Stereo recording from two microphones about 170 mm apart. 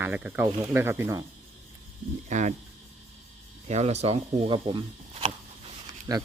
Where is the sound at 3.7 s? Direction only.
40° right (ahead or behind); by 6.2 s 25° right (ahead or behind).